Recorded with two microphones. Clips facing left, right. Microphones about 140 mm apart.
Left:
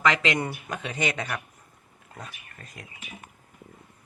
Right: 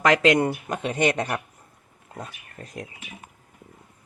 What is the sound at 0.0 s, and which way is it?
Speech, 50° right (ahead or behind).